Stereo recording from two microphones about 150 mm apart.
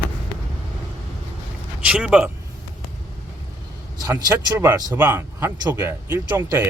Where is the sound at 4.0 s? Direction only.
25° right (ahead or behind).